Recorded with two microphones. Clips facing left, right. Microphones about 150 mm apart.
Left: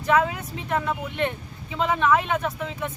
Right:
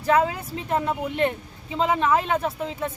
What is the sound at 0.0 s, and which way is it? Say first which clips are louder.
A man's voice: right 1 dB; 30° right (ahead or behind).